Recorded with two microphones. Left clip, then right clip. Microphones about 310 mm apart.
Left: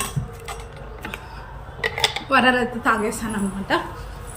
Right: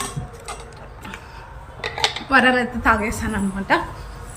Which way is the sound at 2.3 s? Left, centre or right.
Centre.